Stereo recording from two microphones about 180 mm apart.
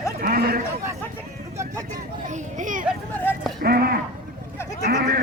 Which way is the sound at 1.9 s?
45° right (ahead or behind).